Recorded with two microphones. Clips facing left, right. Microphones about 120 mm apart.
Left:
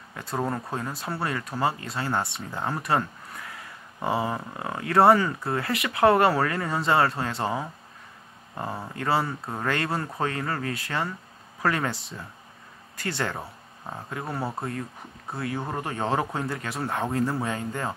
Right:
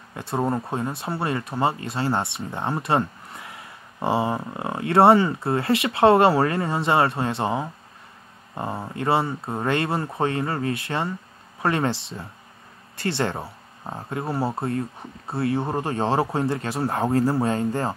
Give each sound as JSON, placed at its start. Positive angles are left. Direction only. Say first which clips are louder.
{"t": 0.1, "sound": "speech", "louder": "right 4 dB", "side_deg": -25}